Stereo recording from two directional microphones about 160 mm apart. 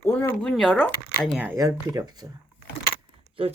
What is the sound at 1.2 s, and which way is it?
Speech, 5° right (ahead or behind).